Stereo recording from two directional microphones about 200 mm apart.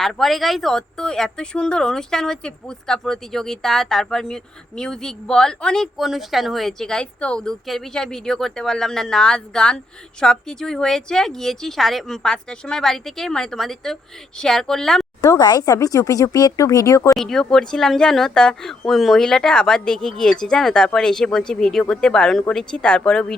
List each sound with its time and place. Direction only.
0.0 s speech: centre (ahead or behind)
15.2 s speech: 20° left (ahead or behind)
17.2 s speech: 5° left (ahead or behind)